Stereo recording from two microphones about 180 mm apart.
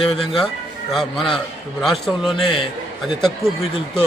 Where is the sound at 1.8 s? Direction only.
Centre (ahead or behind).